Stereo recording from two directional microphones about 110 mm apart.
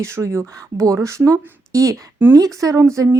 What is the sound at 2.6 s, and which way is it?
Speech, 30° right (ahead or behind).